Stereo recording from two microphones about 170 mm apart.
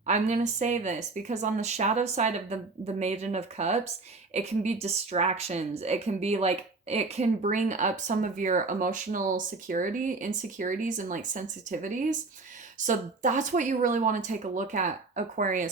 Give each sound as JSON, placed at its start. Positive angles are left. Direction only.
{"t": 0.0, "sound": "a woman's voice", "side_deg": -45}